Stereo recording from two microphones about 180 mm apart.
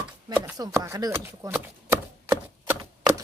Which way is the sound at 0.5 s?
20° right (ahead or behind).